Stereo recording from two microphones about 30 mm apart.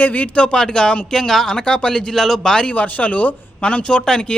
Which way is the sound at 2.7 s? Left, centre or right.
Left.